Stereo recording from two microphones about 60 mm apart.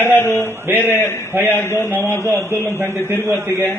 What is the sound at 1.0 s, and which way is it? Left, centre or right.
Speech, left.